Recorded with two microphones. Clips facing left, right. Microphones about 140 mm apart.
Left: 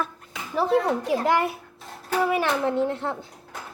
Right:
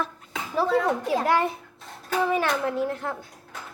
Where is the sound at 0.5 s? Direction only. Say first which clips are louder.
Left 1 dB; 15° left (ahead or behind).